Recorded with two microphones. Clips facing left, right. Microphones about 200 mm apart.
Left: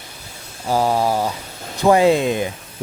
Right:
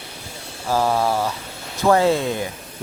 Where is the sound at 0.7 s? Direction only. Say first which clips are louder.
Left 2 dB; 15° left (ahead or behind).